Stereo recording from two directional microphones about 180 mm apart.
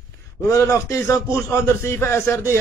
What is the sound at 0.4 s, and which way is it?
A man's voice, 15° left (ahead or behind).